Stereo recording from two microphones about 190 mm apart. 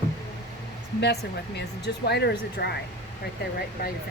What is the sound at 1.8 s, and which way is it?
Speech, 60° left (ahead or behind).